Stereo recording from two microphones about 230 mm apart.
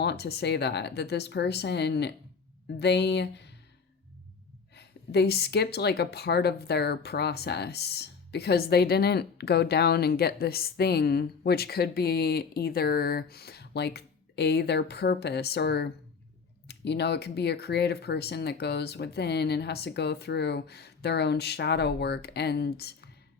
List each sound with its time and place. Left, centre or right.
0.0 s speech: left
4.7 s speech: left